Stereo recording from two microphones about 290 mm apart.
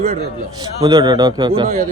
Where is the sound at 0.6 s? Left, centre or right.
Centre.